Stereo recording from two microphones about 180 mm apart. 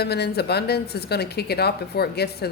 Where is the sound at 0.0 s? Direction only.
65° left (ahead or behind).